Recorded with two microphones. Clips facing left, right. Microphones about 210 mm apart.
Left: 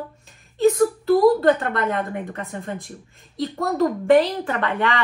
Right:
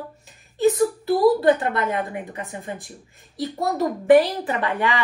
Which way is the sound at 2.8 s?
5° right (ahead or behind).